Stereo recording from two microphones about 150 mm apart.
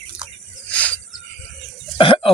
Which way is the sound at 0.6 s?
10° left (ahead or behind).